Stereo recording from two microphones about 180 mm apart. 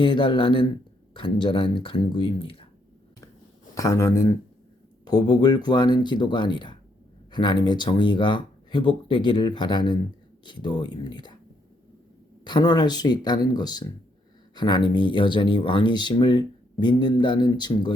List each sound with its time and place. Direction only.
0.0 s speech: 30° left (ahead or behind)
3.8 s speech: 15° left (ahead or behind)
12.5 s speech: 25° left (ahead or behind)